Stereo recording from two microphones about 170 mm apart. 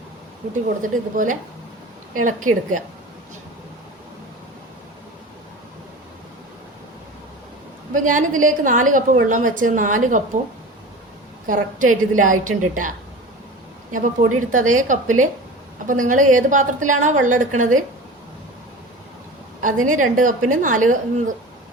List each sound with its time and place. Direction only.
0.8 s a woman's voice: 50° right (ahead or behind)
8.0 s a woman's voice: 50° right (ahead or behind)
11.4 s a woman's voice: 50° right (ahead or behind)
13.9 s a woman's voice: 50° right (ahead or behind)
19.6 s a woman's voice: 50° right (ahead or behind)